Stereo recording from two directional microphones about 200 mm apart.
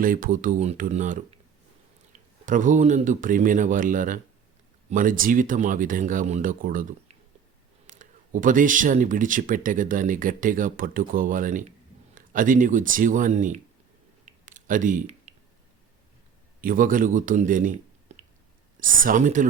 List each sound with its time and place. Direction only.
0.0 s speech: 45° right (ahead or behind)
2.5 s speech: 40° right (ahead or behind)
7.9 s speech: 40° right (ahead or behind)
14.3 s a sound: 40° right (ahead or behind)
16.6 s speech: 45° right (ahead or behind)